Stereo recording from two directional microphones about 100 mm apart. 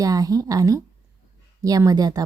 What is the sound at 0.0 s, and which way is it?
A woman's voice, 35° right (ahead or behind).